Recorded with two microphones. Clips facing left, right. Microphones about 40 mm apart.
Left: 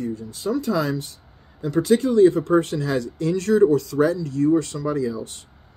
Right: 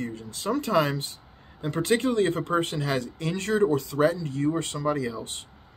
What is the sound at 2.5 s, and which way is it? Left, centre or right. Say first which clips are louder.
Speech: left 6 dB; right.